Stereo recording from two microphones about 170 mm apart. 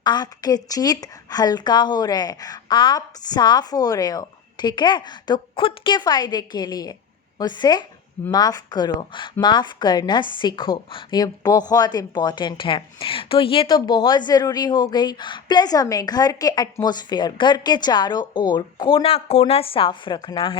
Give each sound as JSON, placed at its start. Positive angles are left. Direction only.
{"t": 0.0, "sound": "a woman's voice", "side_deg": 25}